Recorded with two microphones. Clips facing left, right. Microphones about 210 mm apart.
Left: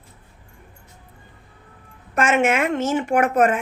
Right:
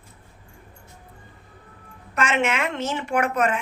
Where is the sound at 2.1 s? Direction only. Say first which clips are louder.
Left 5 dB; 50° left (ahead or behind).